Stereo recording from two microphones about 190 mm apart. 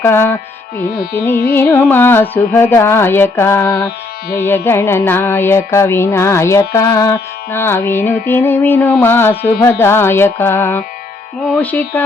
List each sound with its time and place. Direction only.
0.0 s carnatic music: 10° left (ahead or behind)